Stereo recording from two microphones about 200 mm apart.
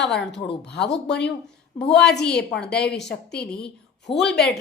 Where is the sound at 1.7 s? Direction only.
5° left (ahead or behind).